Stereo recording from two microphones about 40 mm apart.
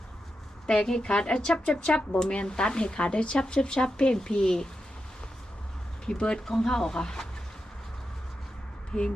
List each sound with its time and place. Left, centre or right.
1.0 s speech: left
6.1 s speech: left
6.4 s speech: centre
8.9 s speech: centre